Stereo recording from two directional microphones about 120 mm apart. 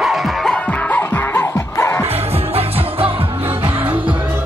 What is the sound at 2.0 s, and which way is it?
Music, 55° right (ahead or behind).